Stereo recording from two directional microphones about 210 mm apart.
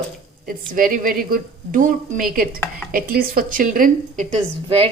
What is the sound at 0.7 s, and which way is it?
A woman's voice, 40° right (ahead or behind).